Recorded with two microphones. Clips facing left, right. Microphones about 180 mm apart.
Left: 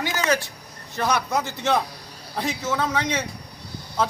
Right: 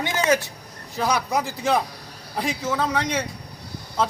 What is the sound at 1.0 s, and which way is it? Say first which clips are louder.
A man's voice: even; centre (ahead or behind).